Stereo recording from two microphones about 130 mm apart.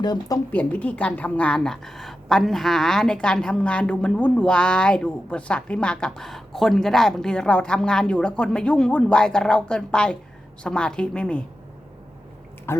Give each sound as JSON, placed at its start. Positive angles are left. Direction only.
{"t": 0.0, "sound": "speech", "side_deg": 35}
{"t": 0.5, "sound": "a woman's voice", "side_deg": 10}
{"t": 12.7, "sound": "speech", "side_deg": 20}